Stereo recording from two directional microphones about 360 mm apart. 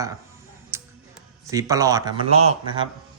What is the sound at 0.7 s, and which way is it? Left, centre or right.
Music, centre.